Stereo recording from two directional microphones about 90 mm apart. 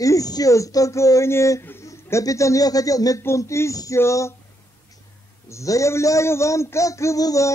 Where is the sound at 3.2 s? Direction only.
30° left (ahead or behind).